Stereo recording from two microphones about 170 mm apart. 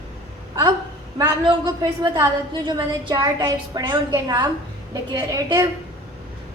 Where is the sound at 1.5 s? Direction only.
20° right (ahead or behind).